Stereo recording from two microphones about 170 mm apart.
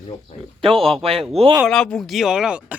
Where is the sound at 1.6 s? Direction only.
5° left (ahead or behind).